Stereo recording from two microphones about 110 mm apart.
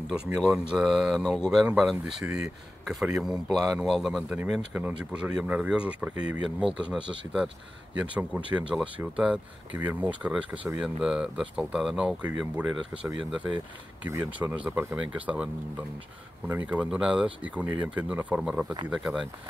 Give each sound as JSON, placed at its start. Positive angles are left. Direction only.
{"t": 0.1, "sound": "speech", "side_deg": -5}
{"t": 4.7, "sound": "speech", "side_deg": -10}
{"t": 14.0, "sound": "speech", "side_deg": -35}
{"t": 14.5, "sound": "speech", "side_deg": -15}